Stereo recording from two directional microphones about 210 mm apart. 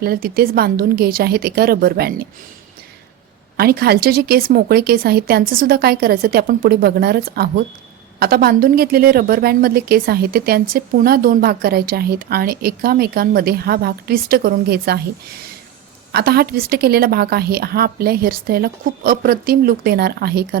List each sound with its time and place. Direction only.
0.0 s a woman's voice: 45° right (ahead or behind)
3.6 s a woman's voice: 45° right (ahead or behind)
16.1 s a woman's voice: 50° right (ahead or behind)